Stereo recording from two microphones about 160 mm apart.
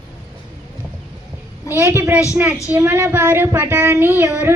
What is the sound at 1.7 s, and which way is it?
A woman's voice, 15° right (ahead or behind).